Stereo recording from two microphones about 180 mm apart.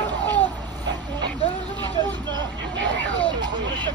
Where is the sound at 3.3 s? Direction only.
25° right (ahead or behind).